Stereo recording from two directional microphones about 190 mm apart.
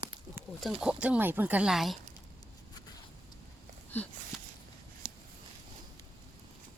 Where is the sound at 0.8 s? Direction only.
5° right (ahead or behind).